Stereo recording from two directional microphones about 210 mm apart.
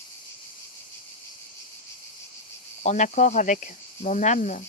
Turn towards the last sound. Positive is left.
turn(degrees=35)  # may be behind; listen again after turning